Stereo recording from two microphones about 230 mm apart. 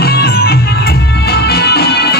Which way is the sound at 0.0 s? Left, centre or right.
Left.